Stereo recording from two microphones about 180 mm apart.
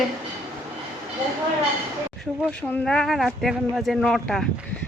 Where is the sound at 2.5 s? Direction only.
5° left (ahead or behind).